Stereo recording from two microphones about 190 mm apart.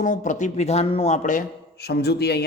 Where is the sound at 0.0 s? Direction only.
40° left (ahead or behind).